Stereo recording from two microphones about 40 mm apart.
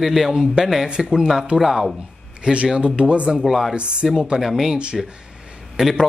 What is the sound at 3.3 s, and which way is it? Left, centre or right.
Speech, centre.